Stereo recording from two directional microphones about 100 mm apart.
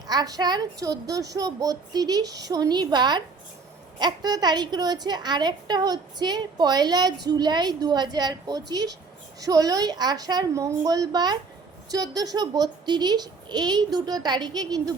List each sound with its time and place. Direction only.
0.1 s a woman's voice: 40° right (ahead or behind)